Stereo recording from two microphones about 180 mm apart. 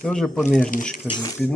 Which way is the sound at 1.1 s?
20° left (ahead or behind).